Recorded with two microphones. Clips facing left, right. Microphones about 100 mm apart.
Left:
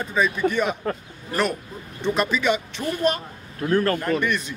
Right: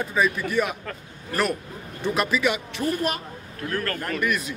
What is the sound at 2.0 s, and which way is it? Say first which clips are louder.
Speech: left 2 dB; 5° right (ahead or behind).